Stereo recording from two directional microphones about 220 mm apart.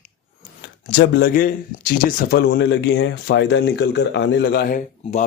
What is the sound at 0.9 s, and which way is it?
Speech, 50° left (ahead or behind).